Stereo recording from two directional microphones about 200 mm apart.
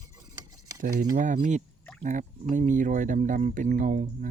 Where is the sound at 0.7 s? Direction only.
45° right (ahead or behind).